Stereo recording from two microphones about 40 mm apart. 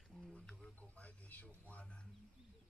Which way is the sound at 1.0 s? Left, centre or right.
Left.